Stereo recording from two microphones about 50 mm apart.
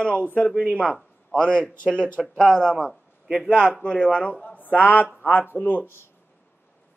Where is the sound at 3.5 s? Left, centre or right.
Left.